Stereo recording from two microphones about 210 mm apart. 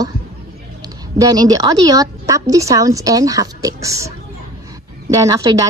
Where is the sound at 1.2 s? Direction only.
20° right (ahead or behind).